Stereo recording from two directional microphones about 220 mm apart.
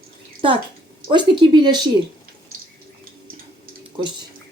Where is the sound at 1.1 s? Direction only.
20° right (ahead or behind).